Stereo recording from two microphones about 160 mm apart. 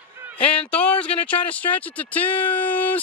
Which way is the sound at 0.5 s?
5° left (ahead or behind).